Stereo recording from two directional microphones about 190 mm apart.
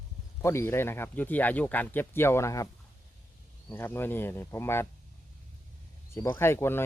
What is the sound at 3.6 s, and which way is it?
Speech, 10° left (ahead or behind).